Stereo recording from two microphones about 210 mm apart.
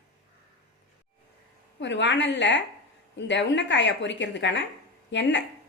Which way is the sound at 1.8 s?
60° left (ahead or behind).